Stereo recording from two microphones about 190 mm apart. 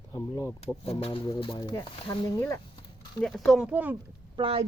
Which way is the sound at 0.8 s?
30° left (ahead or behind).